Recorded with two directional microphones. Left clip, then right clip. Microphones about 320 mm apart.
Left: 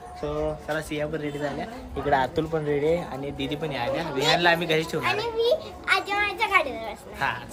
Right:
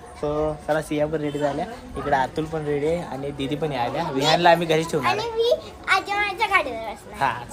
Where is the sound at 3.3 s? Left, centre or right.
Centre.